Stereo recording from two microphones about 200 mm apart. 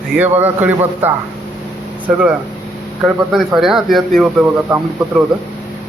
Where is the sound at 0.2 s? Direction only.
10° right (ahead or behind).